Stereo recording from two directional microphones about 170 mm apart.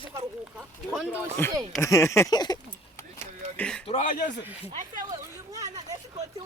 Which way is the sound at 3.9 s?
40° left (ahead or behind).